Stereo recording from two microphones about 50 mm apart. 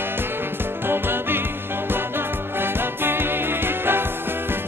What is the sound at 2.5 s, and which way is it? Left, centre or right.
Music, right.